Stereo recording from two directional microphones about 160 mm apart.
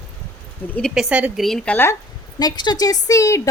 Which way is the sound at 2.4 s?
25° left (ahead or behind).